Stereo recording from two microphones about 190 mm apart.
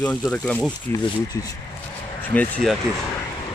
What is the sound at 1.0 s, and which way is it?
Speech, 20° left (ahead or behind).